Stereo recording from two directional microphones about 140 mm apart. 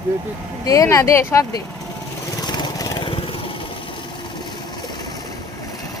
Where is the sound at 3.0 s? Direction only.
40° left (ahead or behind).